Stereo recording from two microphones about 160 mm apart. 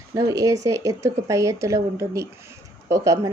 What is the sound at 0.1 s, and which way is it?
A woman's voice, 20° right (ahead or behind).